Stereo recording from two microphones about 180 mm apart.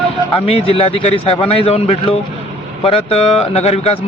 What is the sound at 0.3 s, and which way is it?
A man's voice, 30° left (ahead or behind).